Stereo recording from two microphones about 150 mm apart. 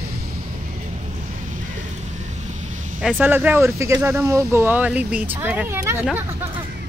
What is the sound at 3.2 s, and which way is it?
Speech, 10° right (ahead or behind).